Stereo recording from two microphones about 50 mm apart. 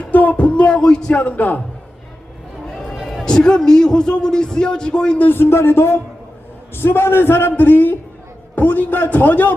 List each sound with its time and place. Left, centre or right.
0.1 s music: left; by 1.1 s centre
1.1 s a man's voice: left
2.7 s a sound: centre
3.2 s a man's voice: centre
5.1 s a man's voice: left
5.4 s a man's voice: left